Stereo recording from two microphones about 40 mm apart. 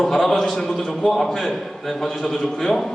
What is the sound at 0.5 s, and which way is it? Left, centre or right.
Speech, centre.